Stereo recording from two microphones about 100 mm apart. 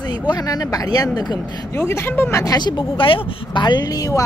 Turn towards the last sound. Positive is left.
turn(degrees=35)  # may be behind; listen again after turning